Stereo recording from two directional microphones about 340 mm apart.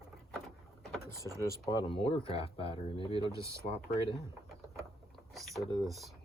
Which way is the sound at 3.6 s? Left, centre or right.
Centre.